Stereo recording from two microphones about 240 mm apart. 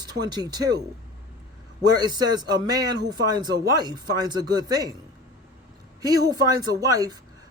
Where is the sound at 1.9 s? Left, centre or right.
Centre.